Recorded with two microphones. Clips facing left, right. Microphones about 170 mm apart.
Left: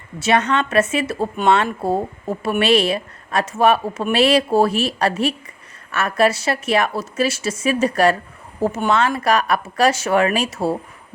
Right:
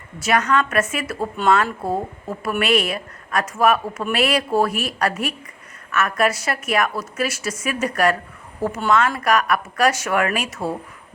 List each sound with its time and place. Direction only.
0.2 s speech: 25° left (ahead or behind)